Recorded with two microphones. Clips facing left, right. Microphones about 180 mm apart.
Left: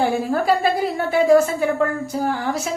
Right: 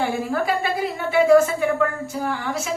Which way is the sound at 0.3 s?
35° left (ahead or behind).